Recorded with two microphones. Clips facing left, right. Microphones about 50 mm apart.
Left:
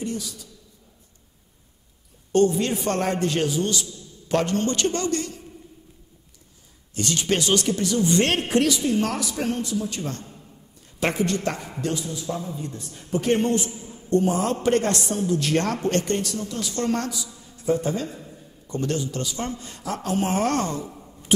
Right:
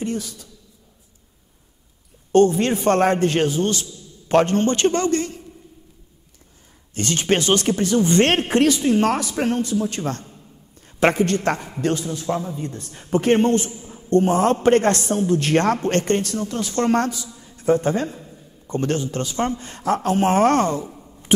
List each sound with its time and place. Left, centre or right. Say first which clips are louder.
0.0 s a man's voice: right 4 dB; right
2.3 s a man's voice: right 4 dB; right
6.9 s a man's voice: right 4 dB; right